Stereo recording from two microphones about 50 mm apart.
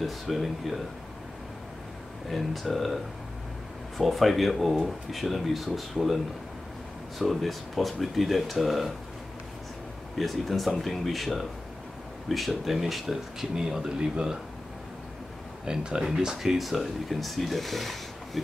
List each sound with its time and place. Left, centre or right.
0.0 s speech: centre
2.2 s speech: centre
4.0 s speech: centre
10.1 s speech: centre
15.6 s speech: centre